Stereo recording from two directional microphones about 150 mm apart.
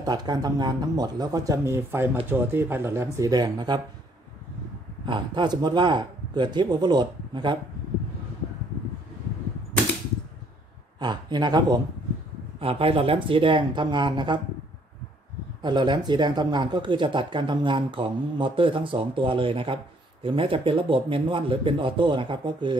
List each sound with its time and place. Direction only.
0.0 s speech: 30° right (ahead or behind)
5.0 s speech: 30° right (ahead or behind)
11.0 s speech: 30° right (ahead or behind)
12.5 s speech: 40° right (ahead or behind)
15.6 s speech: 30° right (ahead or behind)